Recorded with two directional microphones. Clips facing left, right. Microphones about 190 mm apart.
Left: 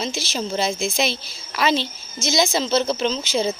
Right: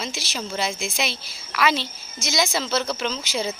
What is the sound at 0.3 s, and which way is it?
Speech, 30° left (ahead or behind).